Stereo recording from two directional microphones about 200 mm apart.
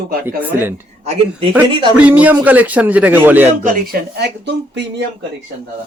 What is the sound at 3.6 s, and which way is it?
Speech, 45° right (ahead or behind).